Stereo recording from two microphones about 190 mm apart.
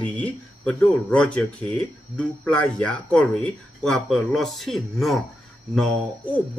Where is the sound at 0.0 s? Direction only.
5° left (ahead or behind).